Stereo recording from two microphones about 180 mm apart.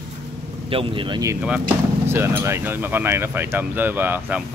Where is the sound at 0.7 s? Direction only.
30° right (ahead or behind).